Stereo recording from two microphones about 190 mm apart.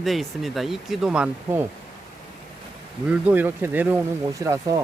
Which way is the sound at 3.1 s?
10° right (ahead or behind).